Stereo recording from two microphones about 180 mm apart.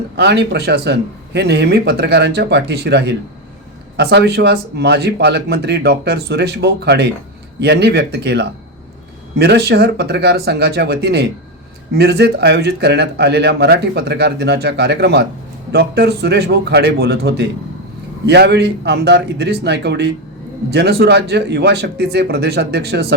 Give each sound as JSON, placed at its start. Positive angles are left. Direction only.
{"t": 0.2, "sound": "speech", "side_deg": -65}